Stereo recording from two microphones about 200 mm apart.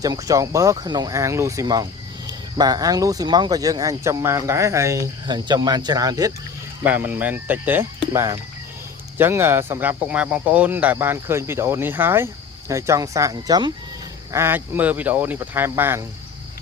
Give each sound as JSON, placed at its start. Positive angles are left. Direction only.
{"t": 0.0, "sound": "speech", "side_deg": -15}